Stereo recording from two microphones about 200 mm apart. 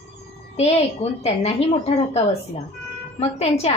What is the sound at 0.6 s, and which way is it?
A woman's voice, 30° left (ahead or behind).